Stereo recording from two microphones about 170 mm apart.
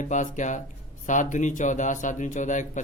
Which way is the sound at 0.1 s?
45° left (ahead or behind).